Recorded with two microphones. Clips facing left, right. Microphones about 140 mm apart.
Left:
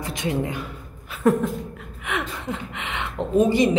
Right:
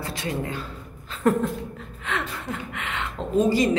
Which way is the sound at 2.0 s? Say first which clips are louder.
Left 1 dB; 15° left (ahead or behind).